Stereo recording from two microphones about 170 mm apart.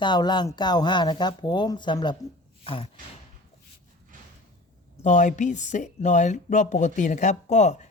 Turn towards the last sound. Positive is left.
turn(degrees=40)  # may be behind; listen again after turning